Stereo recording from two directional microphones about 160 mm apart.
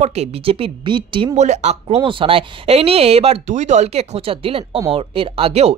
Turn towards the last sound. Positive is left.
turn(degrees=-40)  # may be behind; listen again after turning